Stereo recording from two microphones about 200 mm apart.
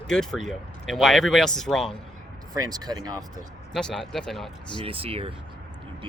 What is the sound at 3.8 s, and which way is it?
Speech, 5° left (ahead or behind).